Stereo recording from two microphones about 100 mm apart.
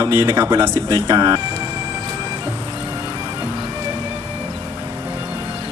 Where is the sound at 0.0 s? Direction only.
30° right (ahead or behind).